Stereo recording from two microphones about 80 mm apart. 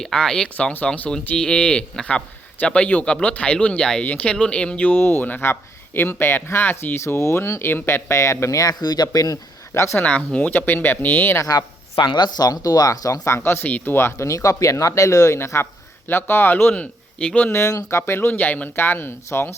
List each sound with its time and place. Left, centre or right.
0.0 s a man's voice: centre
0.5 s a man's voice: centre; by 9.4 s left
9.7 s speech: left
10.0 s speech: centre
11.9 s speech: left
17.6 s speech: left